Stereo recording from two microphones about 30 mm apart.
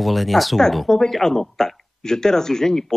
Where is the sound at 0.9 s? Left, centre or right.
Centre.